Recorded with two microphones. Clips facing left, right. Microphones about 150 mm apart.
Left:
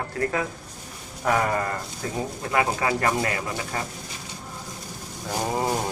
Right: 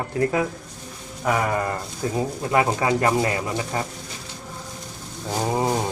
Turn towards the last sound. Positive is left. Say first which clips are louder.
# right 3 dB
turn(degrees=-15)  # may be behind; listen again after turning